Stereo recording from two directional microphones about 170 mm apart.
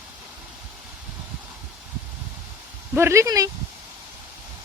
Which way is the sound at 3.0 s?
15° right (ahead or behind).